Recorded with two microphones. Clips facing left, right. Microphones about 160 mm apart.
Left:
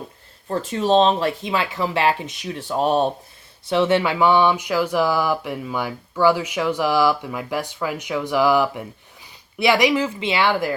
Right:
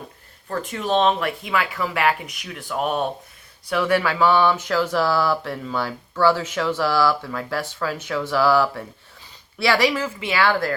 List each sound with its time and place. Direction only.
0.4 s speech: 30° left (ahead or behind)